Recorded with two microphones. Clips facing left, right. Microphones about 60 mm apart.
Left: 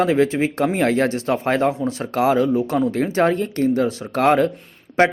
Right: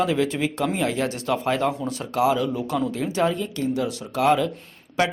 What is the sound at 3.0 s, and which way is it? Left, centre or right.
A man's voice, left.